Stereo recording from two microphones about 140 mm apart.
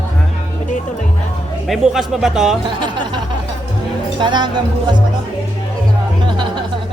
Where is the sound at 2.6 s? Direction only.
35° right (ahead or behind).